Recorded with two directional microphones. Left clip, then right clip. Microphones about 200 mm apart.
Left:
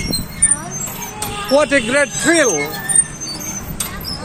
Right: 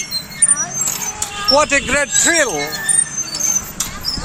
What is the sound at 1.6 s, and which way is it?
Speech, 20° right (ahead or behind).